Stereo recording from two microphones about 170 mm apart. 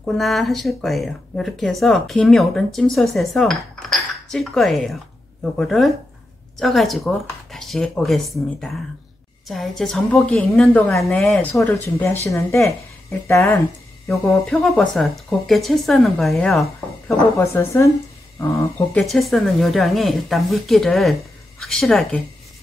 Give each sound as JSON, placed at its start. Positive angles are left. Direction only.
{"t": 0.0, "sound": "speech", "side_deg": 0}
{"t": 13.3, "sound": "a woman's voice", "side_deg": 15}
{"t": 14.0, "sound": "speech", "side_deg": 0}
{"t": 17.4, "sound": "a woman's voice", "side_deg": 15}
{"t": 18.9, "sound": "speech", "side_deg": 0}